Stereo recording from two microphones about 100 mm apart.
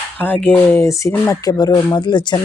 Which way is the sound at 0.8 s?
25° left (ahead or behind).